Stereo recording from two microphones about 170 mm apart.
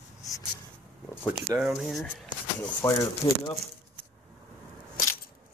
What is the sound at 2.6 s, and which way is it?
Speech, 15° left (ahead or behind).